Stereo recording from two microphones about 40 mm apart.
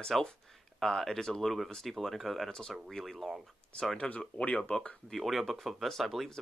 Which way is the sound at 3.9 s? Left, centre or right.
Left.